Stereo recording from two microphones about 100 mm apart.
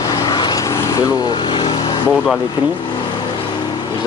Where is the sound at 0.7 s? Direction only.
30° left (ahead or behind); by 2.0 s 45° left (ahead or behind).